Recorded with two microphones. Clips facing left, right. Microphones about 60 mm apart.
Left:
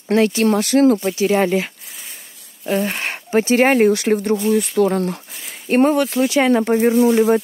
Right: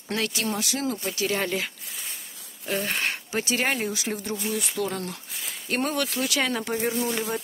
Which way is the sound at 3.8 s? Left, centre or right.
Left.